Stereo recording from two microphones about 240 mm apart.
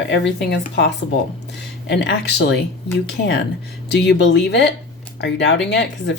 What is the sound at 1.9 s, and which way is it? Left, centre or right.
Speech, left.